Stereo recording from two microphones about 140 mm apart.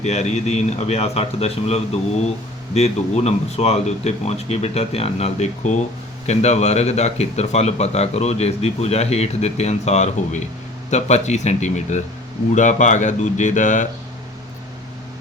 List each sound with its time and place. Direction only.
0.0 s speech: 50° left (ahead or behind)